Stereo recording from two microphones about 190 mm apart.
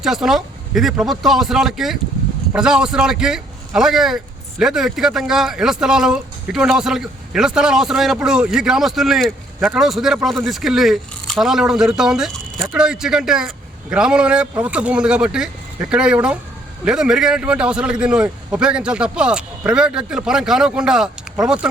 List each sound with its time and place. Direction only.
0.0 s a man's voice: centre (ahead or behind)